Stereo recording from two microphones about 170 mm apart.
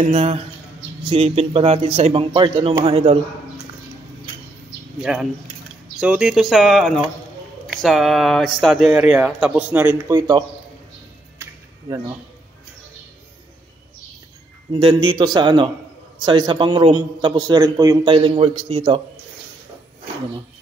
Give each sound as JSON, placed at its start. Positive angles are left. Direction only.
{"t": 0.1, "sound": "a man's voice", "side_deg": -40}
{"t": 5.0, "sound": "speech", "side_deg": -5}
{"t": 10.0, "sound": "a man's voice", "side_deg": -20}
{"t": 14.7, "sound": "a man's voice", "side_deg": -30}